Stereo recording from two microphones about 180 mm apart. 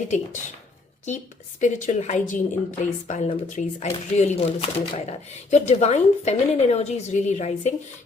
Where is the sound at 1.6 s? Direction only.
40° left (ahead or behind).